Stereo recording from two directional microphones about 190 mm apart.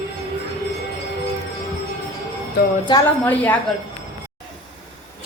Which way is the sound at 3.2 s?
10° left (ahead or behind).